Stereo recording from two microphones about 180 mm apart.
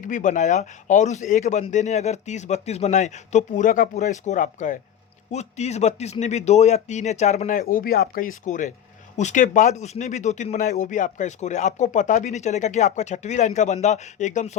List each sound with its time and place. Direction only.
0.0 s speech: 45° left (ahead or behind)